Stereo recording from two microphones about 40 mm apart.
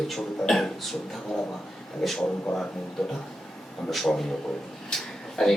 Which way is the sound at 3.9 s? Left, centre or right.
Centre.